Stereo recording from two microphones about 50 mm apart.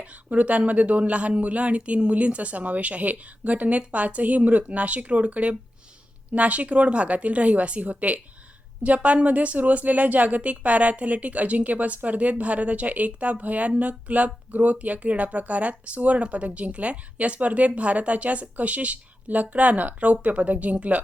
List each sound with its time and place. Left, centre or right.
0.0 s speech: right